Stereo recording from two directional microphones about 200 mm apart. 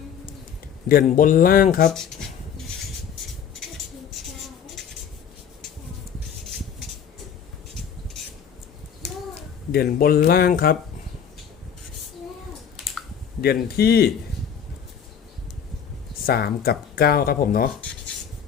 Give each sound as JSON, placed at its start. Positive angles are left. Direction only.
{"t": 1.1, "sound": "speech", "side_deg": 40}
{"t": 1.9, "sound": "speech", "side_deg": 0}
{"t": 9.7, "sound": "speech", "side_deg": 50}
{"t": 13.4, "sound": "speech", "side_deg": 50}
{"t": 16.2, "sound": "speech", "side_deg": 50}